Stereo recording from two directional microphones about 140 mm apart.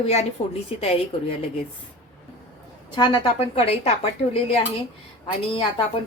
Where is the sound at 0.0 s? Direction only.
50° left (ahead or behind).